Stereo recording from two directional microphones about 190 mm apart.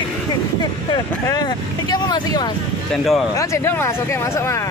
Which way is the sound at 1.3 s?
20° left (ahead or behind).